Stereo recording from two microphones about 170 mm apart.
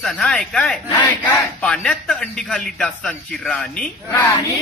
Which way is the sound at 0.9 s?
25° left (ahead or behind).